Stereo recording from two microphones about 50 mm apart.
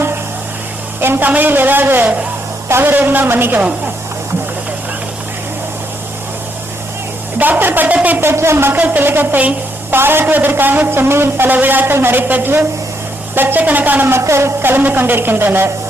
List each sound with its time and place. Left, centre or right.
1.0 s a sound: right
1.3 s speech: right
2.6 s a woman's voice: right
2.9 s speech: right
7.3 s a sound: right
8.2 s a man's voice: right
8.8 s a man's voice: right
14.1 s a sound: right
14.6 s a man's voice: right